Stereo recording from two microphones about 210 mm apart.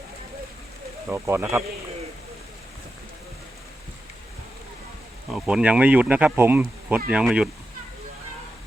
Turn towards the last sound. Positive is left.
turn(degrees=-5)  # may be behind; listen again after turning